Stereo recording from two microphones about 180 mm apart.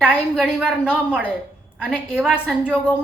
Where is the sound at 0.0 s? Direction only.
5° right (ahead or behind).